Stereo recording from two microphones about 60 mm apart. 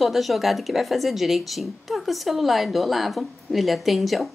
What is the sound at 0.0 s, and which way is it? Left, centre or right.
A woman's voice, centre.